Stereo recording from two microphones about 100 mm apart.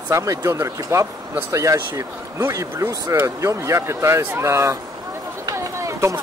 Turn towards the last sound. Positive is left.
turn(degrees=-30)  # may be behind; listen again after turning